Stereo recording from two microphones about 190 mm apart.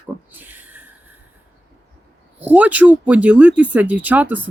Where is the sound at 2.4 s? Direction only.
10° right (ahead or behind).